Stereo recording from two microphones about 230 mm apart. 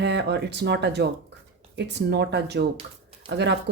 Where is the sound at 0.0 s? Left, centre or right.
Right.